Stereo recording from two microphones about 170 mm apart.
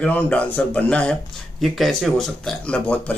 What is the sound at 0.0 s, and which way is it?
Speech, 10° left (ahead or behind).